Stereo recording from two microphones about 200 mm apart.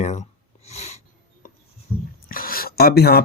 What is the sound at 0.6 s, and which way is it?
Snort, 35° left (ahead or behind).